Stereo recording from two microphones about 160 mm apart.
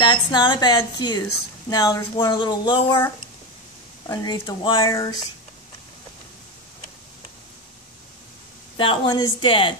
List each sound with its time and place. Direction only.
0.0 s speech: 30° left (ahead or behind)
4.1 s speech: 25° left (ahead or behind)
4.8 s speech: 20° left (ahead or behind)
8.7 s a woman's voice: 30° left (ahead or behind)